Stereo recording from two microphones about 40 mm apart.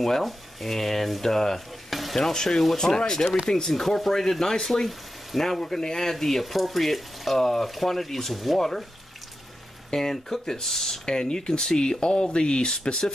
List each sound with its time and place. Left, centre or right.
0.0 s speech: centre
2.1 s speech: centre
9.8 s speech: centre